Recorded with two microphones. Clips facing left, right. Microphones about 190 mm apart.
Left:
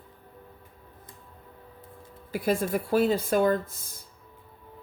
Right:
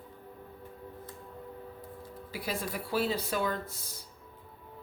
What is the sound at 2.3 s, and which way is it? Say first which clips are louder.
A woman's voice: left 10 dB; 50° left (ahead or behind).